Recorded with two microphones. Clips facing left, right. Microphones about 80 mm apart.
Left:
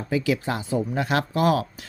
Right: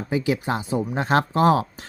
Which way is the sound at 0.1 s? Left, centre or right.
Right.